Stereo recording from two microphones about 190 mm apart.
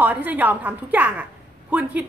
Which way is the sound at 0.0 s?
10° right (ahead or behind).